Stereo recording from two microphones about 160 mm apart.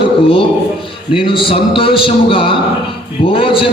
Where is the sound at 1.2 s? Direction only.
35° left (ahead or behind).